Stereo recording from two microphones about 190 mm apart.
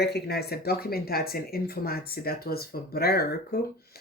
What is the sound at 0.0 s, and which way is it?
Speech, 60° left (ahead or behind).